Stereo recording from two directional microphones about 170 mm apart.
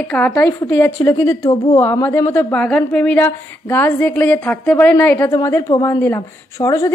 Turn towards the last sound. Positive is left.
turn(degrees=20)  # may be behind; listen again after turning